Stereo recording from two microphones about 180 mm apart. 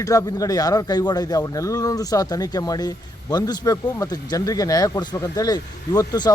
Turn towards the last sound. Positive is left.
turn(degrees=20)  # may be behind; listen again after turning